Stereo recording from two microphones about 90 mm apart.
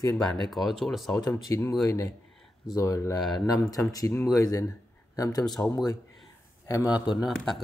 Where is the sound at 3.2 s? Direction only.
Centre (ahead or behind).